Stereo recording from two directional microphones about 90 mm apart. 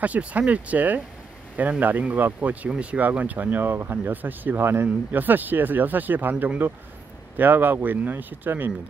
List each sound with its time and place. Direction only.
0.0 s speech: 15° right (ahead or behind)